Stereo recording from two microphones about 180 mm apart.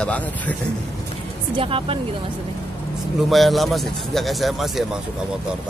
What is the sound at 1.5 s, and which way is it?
Speech, 30° right (ahead or behind).